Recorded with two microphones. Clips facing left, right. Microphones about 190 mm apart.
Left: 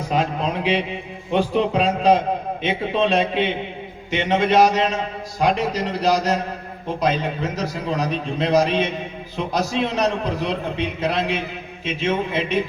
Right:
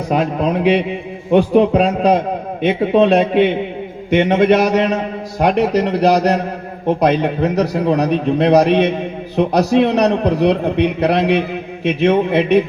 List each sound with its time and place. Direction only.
0.1 s a man's voice: 55° right (ahead or behind)